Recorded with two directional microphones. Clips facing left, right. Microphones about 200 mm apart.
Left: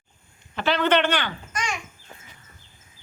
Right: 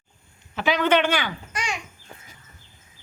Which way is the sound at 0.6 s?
10° right (ahead or behind).